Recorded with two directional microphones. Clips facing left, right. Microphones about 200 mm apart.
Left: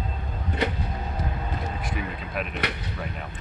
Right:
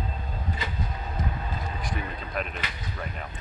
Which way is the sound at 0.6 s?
70° left (ahead or behind).